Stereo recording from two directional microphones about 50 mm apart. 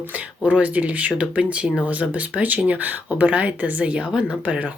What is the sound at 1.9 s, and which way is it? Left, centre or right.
Speech, right.